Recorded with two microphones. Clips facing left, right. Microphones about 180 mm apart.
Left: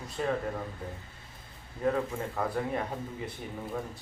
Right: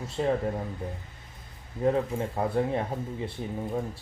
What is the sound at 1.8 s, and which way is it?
Speech, 25° right (ahead or behind).